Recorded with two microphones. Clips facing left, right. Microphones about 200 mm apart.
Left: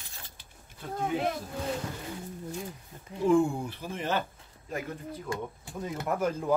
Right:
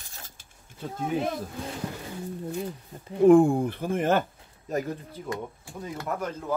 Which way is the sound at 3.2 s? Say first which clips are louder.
Right 7 dB; 55° right (ahead or behind).